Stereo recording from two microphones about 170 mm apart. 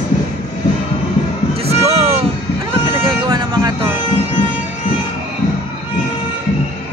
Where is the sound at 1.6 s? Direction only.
35° right (ahead or behind).